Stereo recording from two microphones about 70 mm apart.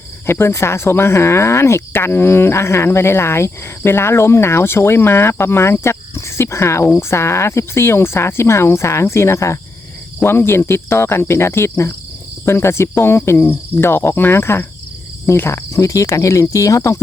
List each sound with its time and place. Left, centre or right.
0.3 s speech: left
13.3 s cricket: left
13.8 s speech: left
15.3 s cricket: left